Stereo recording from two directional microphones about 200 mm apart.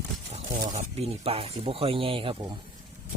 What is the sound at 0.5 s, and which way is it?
Speech, 35° right (ahead or behind).